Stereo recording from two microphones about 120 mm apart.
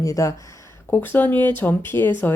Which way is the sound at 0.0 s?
25° left (ahead or behind).